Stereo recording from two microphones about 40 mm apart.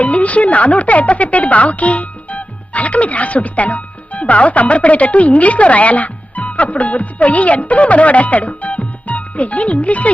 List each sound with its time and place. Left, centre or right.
0.0 s speech: left